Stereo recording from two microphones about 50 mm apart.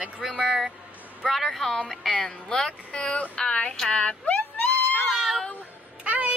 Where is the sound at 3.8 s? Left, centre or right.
Left.